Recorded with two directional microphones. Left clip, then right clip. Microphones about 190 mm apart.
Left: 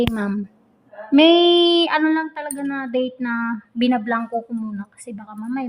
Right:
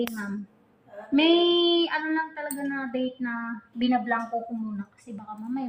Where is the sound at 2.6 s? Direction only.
60° left (ahead or behind).